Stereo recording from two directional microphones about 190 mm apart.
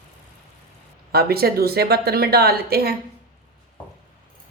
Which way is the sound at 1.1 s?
55° right (ahead or behind).